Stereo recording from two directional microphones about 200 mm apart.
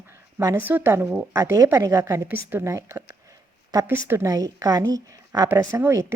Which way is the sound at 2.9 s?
15° right (ahead or behind).